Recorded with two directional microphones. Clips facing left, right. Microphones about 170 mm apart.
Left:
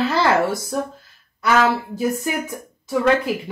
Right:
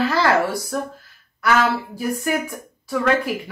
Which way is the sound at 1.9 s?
20° left (ahead or behind).